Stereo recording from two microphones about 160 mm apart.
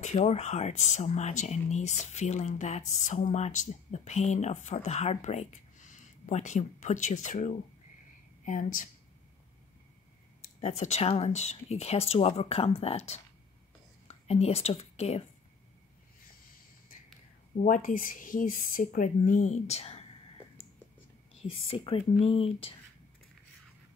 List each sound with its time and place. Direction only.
0.0 s speech: 45° left (ahead or behind)
10.6 s a woman's voice: 45° left (ahead or behind)
17.6 s speech: 55° left (ahead or behind)
21.4 s speech: 35° left (ahead or behind)